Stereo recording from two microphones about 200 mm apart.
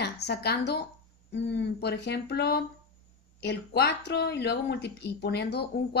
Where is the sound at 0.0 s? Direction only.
55° left (ahead or behind).